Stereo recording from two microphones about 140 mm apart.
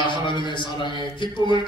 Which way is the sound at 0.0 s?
35° left (ahead or behind).